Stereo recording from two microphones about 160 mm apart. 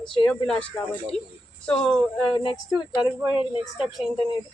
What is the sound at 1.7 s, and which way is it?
Speech, 5° left (ahead or behind).